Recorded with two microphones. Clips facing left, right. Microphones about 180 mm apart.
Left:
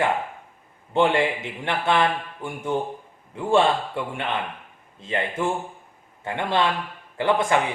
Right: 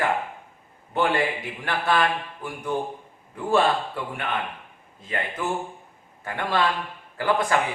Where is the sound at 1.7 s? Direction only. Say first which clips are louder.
Left 1 dB; 25° left (ahead or behind).